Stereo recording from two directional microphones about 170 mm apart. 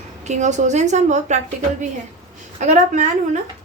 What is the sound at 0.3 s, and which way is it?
Speech, 45° right (ahead or behind).